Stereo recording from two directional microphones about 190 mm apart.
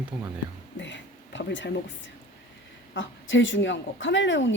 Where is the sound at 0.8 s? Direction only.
70° left (ahead or behind).